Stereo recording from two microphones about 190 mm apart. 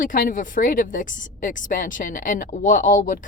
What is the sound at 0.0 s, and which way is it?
Speech, 45° left (ahead or behind).